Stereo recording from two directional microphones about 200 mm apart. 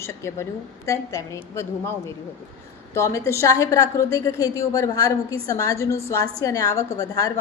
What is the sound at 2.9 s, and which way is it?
A woman's voice, 15° left (ahead or behind).